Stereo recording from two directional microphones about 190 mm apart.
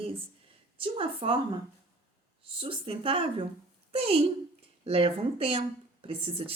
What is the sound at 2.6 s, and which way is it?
A woman's voice, 30° right (ahead or behind).